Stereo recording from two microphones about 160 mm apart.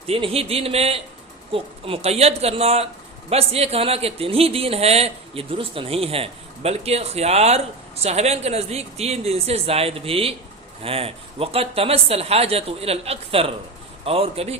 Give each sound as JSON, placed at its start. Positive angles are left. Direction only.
{"t": 0.1, "sound": "speech", "side_deg": -40}